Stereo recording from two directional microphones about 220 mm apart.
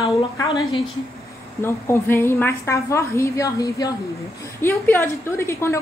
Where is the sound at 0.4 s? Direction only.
20° left (ahead or behind).